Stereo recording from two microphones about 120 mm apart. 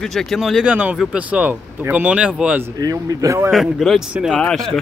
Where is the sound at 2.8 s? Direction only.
30° right (ahead or behind).